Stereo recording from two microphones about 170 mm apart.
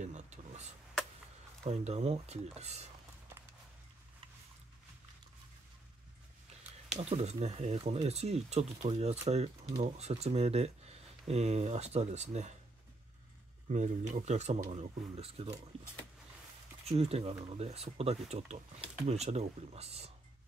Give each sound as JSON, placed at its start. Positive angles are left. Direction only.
{"t": 0.0, "sound": "a sound", "side_deg": -45}
{"t": 1.7, "sound": "speech", "side_deg": -40}
{"t": 7.0, "sound": "speech", "side_deg": -40}
{"t": 13.7, "sound": "speech", "side_deg": -45}
{"t": 16.8, "sound": "speech", "side_deg": -35}